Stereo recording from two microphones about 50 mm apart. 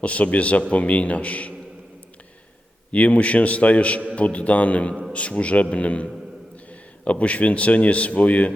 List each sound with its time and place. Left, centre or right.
0.0 s speech: left
2.9 s speech: left